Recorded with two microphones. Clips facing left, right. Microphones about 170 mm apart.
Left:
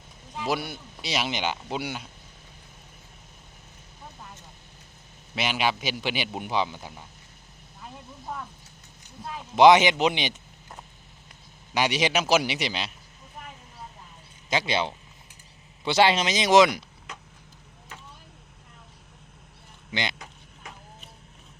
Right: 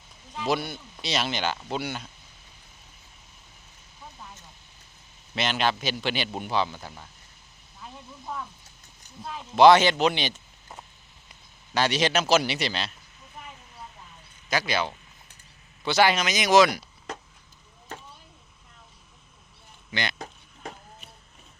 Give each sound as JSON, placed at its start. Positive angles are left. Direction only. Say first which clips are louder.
{"t": 0.3, "sound": "a man's voice", "louder": "right 1 dB", "side_deg": 10}
{"t": 5.3, "sound": "a man's voice", "louder": "right 1 dB", "side_deg": 10}
{"t": 9.2, "sound": "a man's voice", "louder": "even", "side_deg": 10}
{"t": 11.7, "sound": "a man's voice", "louder": "even", "side_deg": 15}
{"t": 14.5, "sound": "speech", "louder": "left 1 dB", "side_deg": 25}
{"t": 19.9, "sound": "speech", "louder": "even", "side_deg": 20}